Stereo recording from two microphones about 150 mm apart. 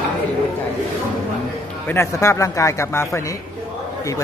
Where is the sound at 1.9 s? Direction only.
20° left (ahead or behind).